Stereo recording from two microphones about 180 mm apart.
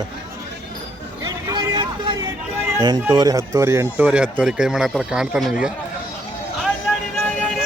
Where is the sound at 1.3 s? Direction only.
20° right (ahead or behind).